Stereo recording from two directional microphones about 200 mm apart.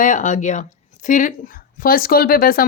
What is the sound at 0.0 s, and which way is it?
Speech, 40° left (ahead or behind).